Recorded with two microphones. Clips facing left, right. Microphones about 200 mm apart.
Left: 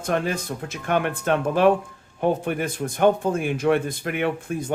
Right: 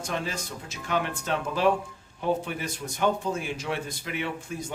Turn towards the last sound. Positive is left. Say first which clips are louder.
# left 8 dB
turn(degrees=55)  # may be behind; listen again after turning